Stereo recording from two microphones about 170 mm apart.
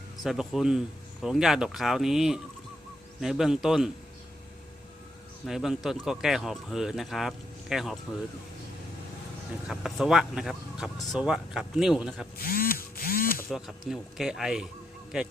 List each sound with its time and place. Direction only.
0.2 s speech: centre (ahead or behind)
5.5 s speech: 5° right (ahead or behind)
9.6 s speech: centre (ahead or behind)
12.4 s a sound: 60° left (ahead or behind)
13.5 s speech: centre (ahead or behind)